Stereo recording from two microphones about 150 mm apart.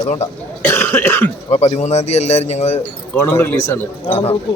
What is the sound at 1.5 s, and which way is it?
Speech, 45° left (ahead or behind).